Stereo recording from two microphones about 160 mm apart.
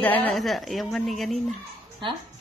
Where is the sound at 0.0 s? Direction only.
10° left (ahead or behind).